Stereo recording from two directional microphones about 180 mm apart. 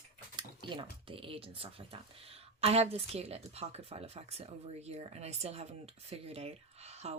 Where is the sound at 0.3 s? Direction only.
25° right (ahead or behind).